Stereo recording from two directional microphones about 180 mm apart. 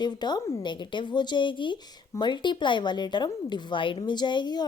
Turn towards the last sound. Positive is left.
turn(degrees=25)  # may be behind; listen again after turning